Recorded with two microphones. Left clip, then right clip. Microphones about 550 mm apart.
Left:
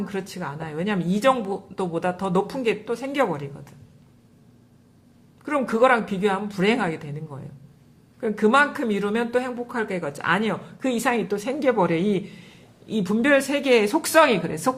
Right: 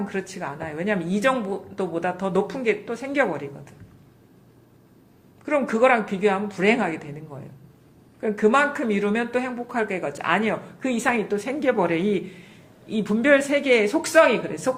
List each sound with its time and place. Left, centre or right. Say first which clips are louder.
0.1 s speech: right 1 dB; left
5.8 s speech: left 1 dB; left
8.2 s speech: even; left